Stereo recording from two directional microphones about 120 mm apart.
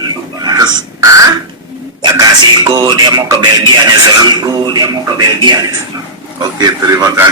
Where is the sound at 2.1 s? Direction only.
30° right (ahead or behind).